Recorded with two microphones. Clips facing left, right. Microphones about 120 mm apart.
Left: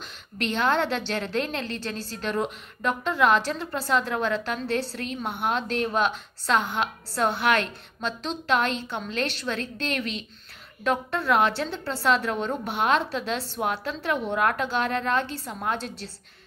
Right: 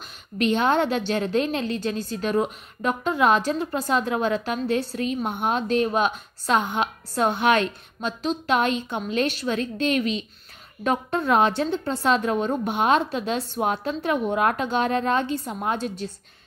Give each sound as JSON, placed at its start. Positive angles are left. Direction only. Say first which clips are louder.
{"t": 0.4, "sound": "a woman's voice", "louder": "right 4 dB", "side_deg": -15}